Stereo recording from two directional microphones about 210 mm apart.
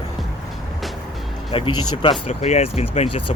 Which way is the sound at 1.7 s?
90° left.